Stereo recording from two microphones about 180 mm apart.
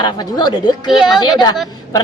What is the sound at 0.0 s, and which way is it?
Speech, 25° left (ahead or behind).